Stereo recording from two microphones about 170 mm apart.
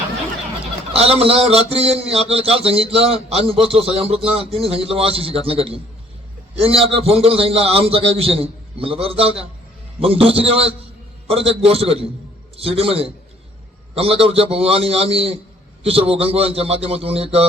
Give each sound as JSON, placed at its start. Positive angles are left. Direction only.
{"t": 0.9, "sound": "a man's voice", "side_deg": -35}